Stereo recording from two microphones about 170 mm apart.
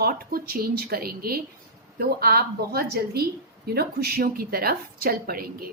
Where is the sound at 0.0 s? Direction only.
60° right (ahead or behind).